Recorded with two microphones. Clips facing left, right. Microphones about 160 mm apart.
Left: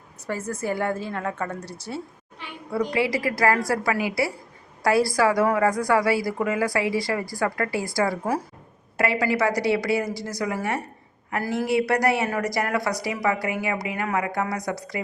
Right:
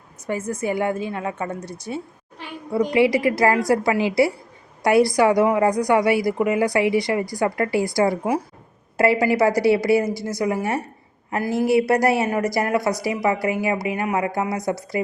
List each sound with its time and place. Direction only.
0.3 s a woman's voice: 20° right (ahead or behind)